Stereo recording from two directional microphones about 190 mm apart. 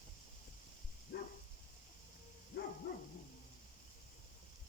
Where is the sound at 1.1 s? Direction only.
50° left (ahead or behind).